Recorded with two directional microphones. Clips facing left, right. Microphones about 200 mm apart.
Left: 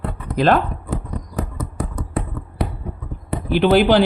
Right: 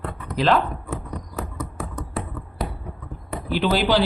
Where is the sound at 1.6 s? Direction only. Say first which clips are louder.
Left 4 dB; 35° left (ahead or behind).